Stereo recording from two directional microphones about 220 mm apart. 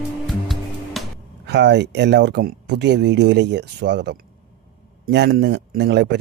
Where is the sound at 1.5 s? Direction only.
50° right (ahead or behind).